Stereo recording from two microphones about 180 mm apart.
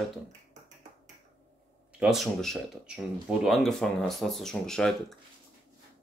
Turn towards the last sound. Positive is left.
turn(degrees=5)  # may be behind; listen again after turning